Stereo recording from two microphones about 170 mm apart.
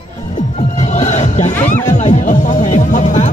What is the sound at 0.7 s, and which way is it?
Music, 40° left (ahead or behind).